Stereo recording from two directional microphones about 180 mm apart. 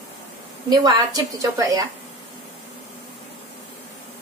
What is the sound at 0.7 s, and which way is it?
A woman's voice, 20° right (ahead or behind).